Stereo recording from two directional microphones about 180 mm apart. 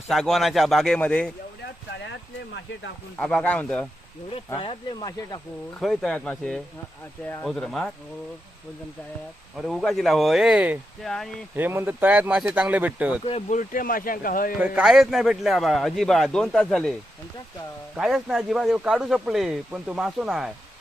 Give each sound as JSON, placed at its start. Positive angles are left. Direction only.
{"t": 0.1, "sound": "speech", "side_deg": 0}
{"t": 3.2, "sound": "speech", "side_deg": 5}
{"t": 4.4, "sound": "speech", "side_deg": 25}
{"t": 5.8, "sound": "speech", "side_deg": 0}
{"t": 9.6, "sound": "speech", "side_deg": 0}
{"t": 11.5, "sound": "speech", "side_deg": -10}
{"t": 13.2, "sound": "speech", "side_deg": 30}
{"t": 13.6, "sound": "speech", "side_deg": 50}
{"t": 14.6, "sound": "speech", "side_deg": -5}
{"t": 17.9, "sound": "speech", "side_deg": -5}